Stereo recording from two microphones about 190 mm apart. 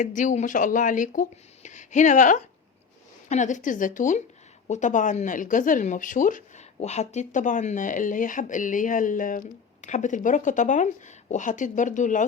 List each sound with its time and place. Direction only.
0.0 s speech: 40° left (ahead or behind)